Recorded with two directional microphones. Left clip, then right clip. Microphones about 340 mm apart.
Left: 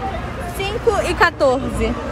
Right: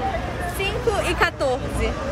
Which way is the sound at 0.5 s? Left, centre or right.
Centre.